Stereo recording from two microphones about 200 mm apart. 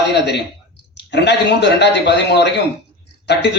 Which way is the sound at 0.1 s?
55° left (ahead or behind).